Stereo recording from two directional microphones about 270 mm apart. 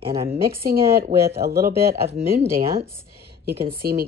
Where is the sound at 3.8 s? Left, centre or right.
Right.